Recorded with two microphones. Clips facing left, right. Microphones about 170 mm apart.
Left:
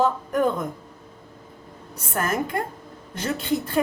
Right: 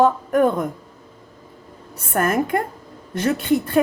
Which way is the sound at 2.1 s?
55° right (ahead or behind).